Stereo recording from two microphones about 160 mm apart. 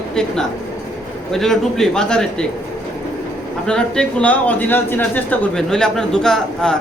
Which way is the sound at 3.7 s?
5° left (ahead or behind).